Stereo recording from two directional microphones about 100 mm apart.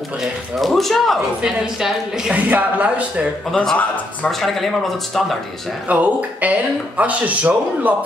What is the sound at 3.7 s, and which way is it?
Speech, 15° left (ahead or behind).